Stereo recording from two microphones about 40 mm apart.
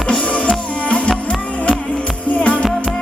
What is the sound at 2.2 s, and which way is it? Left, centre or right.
Music, left.